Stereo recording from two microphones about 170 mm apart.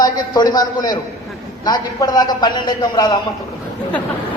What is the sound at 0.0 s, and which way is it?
A man's voice, 25° left (ahead or behind).